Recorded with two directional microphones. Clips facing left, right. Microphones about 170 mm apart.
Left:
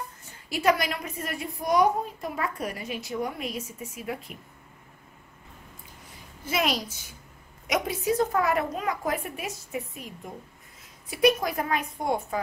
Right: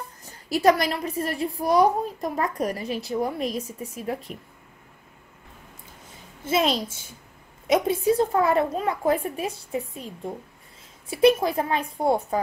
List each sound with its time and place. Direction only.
0.2 s a woman's voice: 40° right (ahead or behind)
6.4 s a woman's voice: 25° right (ahead or behind)